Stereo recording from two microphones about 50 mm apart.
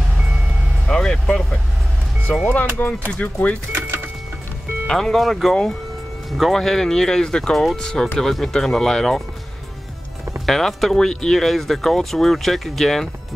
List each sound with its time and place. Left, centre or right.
0.8 s vehicle: centre
2.4 s speech: left
3.7 s music: right
4.8 s speech: centre
10.4 s speech: centre